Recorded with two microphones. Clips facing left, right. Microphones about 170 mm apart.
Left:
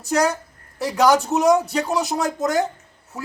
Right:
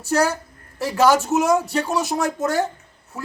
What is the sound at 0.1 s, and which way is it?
A man's voice, centre (ahead or behind).